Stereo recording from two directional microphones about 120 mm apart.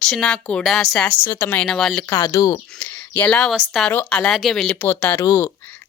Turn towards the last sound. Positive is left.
turn(degrees=30)  # may be behind; listen again after turning